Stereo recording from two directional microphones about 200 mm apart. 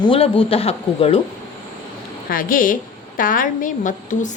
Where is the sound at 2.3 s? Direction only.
45° left (ahead or behind).